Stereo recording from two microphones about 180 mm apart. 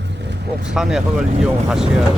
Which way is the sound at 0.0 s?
75° right (ahead or behind).